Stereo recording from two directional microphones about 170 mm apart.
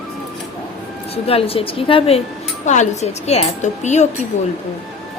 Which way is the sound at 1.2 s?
35° left (ahead or behind).